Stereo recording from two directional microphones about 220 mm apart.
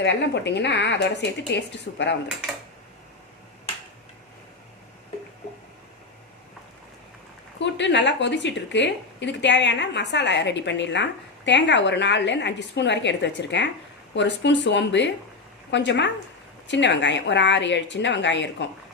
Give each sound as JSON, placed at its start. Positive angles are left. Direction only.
{"t": 0.0, "sound": "speech", "side_deg": 50}
{"t": 7.6, "sound": "speech", "side_deg": 55}